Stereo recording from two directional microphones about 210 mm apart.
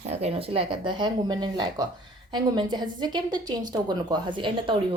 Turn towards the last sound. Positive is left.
turn(degrees=-25)  # may be behind; listen again after turning